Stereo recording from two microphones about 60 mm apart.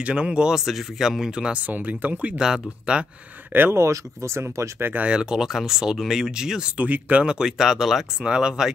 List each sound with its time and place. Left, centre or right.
0.0 s speech: centre
2.3 s speech: centre
3.7 s speech: right
4.9 s speech: centre
6.8 s speech: right